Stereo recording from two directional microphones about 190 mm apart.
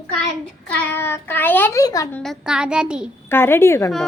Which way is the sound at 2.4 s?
5° right (ahead or behind).